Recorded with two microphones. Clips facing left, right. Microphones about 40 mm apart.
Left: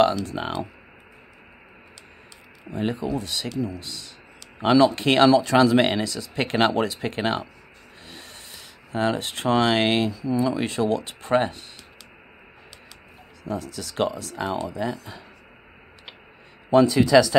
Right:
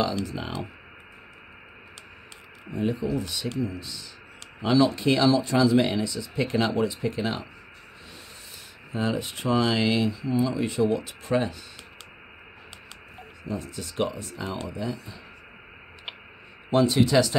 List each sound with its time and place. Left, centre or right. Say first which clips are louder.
0.0 s speech: left 7 dB; left
2.7 s speech: left 1 dB; left
4.6 s speech: left 4 dB; left
11.1 s speech: left 4 dB; left
13.4 s speech: left 3 dB; left